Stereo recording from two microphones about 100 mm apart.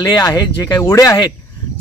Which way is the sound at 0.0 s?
40° left (ahead or behind).